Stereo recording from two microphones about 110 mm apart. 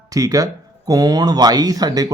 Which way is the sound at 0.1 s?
35° right (ahead or behind).